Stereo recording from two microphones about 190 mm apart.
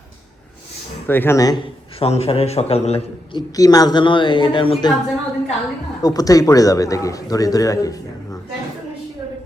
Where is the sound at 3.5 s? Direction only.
20° left (ahead or behind).